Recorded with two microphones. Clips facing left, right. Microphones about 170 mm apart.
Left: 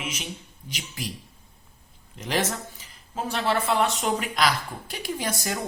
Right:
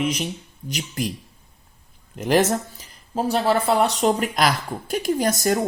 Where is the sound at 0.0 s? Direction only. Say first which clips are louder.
Right 11 dB; 35° right (ahead or behind).